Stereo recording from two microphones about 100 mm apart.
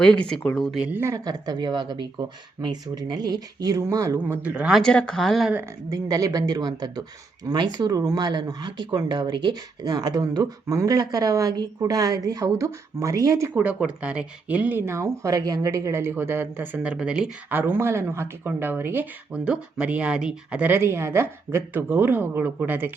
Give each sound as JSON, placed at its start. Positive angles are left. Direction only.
{"t": 0.0, "sound": "speech", "side_deg": 10}
{"t": 0.8, "sound": "speech", "side_deg": -15}
{"t": 1.0, "sound": "speech", "side_deg": -35}
{"t": 4.2, "sound": "speech", "side_deg": -15}
{"t": 4.8, "sound": "speech", "side_deg": 10}
{"t": 5.9, "sound": "speech", "side_deg": -35}
{"t": 13.5, "sound": "speech", "side_deg": -15}
{"t": 17.5, "sound": "speech", "side_deg": -20}